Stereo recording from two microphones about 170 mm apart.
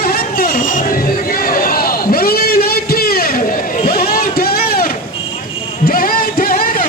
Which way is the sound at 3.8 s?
60° left (ahead or behind).